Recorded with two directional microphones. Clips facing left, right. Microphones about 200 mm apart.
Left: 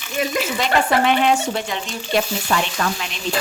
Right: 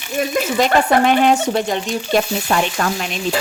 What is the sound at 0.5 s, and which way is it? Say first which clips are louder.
Frying: right 5 dB; 45° right (ahead or behind).